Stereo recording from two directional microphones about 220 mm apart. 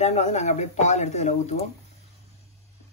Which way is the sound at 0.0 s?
30° left (ahead or behind).